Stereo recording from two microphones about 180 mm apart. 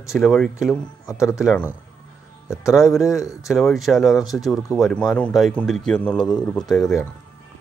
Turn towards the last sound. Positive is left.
turn(degrees=5)  # may be behind; listen again after turning